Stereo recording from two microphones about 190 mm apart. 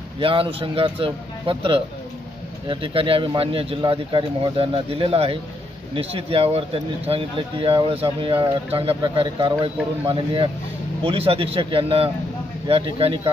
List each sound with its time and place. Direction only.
0.2 s speech: 30° right (ahead or behind)